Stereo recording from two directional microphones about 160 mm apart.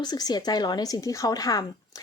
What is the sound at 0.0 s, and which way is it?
A woman's voice, 25° left (ahead or behind).